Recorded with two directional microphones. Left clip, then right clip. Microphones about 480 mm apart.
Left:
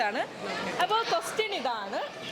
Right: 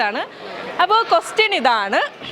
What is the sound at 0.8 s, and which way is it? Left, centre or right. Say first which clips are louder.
A woman's voice: right 13 dB; right.